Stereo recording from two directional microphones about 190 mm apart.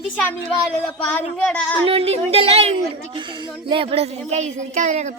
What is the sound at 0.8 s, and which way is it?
Speech, 5° left (ahead or behind).